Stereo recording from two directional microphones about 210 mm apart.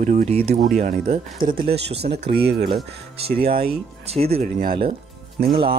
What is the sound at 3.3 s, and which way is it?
Speech, 25° right (ahead or behind).